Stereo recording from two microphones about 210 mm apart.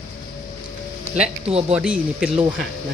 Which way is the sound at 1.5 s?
30° right (ahead or behind).